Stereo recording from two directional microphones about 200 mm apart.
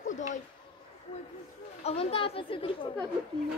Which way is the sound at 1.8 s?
30° left (ahead or behind).